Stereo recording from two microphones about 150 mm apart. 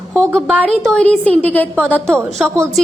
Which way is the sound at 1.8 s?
5° left (ahead or behind).